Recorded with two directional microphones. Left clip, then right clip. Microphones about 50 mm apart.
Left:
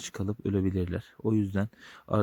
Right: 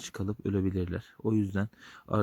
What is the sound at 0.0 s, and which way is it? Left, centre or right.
Speech, left.